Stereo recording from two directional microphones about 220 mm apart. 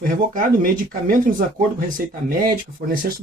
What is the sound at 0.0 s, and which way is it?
Speech, 40° right (ahead or behind).